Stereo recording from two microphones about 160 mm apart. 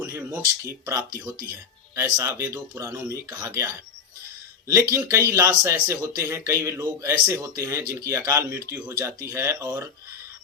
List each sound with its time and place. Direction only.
0.0 s speech: 15° right (ahead or behind)
4.9 s speech: 20° right (ahead or behind)